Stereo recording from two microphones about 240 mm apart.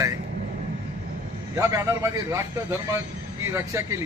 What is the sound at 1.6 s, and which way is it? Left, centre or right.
A man's voice, centre.